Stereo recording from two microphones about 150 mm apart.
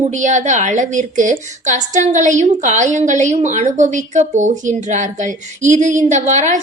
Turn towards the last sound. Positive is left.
turn(degrees=-55)  # may be behind; listen again after turning